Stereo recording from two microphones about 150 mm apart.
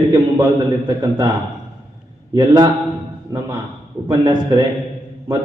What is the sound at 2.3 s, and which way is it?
Speech, 25° right (ahead or behind).